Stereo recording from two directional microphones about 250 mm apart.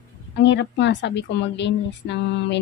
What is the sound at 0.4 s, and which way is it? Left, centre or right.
A woman's voice, left.